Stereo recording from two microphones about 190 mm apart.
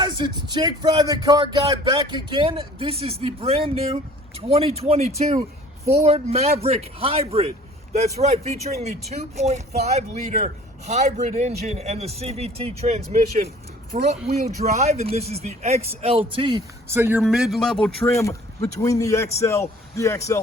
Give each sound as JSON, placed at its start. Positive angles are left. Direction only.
{"t": 0.0, "sound": "a man's voice", "side_deg": -20}
{"t": 16.9, "sound": "speech", "side_deg": -10}
{"t": 17.2, "sound": "speech", "side_deg": 0}
{"t": 18.1, "sound": "a man's voice", "side_deg": 15}